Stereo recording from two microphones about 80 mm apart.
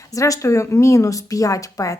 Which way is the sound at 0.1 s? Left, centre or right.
Left.